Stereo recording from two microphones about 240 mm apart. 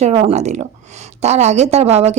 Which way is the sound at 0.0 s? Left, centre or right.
Right.